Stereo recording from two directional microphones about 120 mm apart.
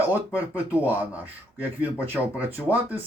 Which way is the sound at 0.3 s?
15° right (ahead or behind).